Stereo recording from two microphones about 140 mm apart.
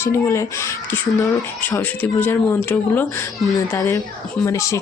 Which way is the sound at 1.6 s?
15° left (ahead or behind).